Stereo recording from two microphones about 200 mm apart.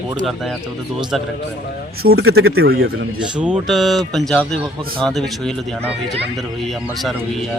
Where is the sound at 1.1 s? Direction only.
Centre (ahead or behind).